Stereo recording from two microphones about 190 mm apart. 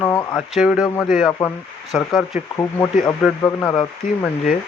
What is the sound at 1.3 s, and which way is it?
Speech, 15° left (ahead or behind).